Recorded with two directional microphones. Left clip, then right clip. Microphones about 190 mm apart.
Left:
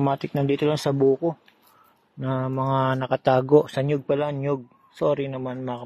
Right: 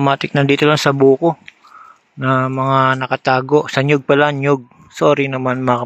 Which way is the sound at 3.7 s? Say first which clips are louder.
Right 10 dB; 20° right (ahead or behind).